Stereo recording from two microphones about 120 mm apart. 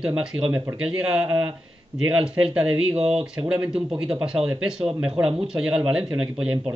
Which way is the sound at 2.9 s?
55° right (ahead or behind).